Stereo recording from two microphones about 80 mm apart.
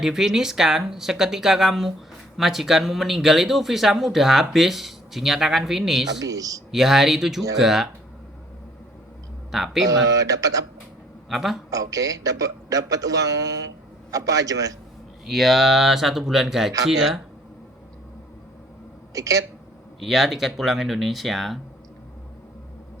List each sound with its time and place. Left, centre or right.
0.0 s speech: centre
6.2 s a man's voice: right
6.7 s speech: centre
9.5 s speech: centre
9.8 s a man's voice: right
11.3 s speech: centre
11.7 s a man's voice: right
15.3 s speech: centre
19.1 s speech: right
20.0 s speech: centre